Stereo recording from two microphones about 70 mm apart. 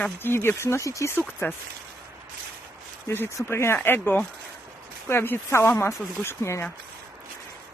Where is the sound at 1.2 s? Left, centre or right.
Left.